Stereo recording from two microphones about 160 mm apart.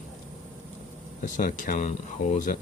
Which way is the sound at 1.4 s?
50° left (ahead or behind).